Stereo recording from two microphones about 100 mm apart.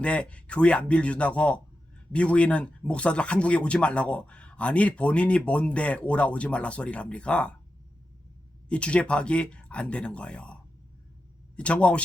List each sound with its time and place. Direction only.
0.0 s speech: 10° left (ahead or behind)
8.7 s speech: 10° left (ahead or behind)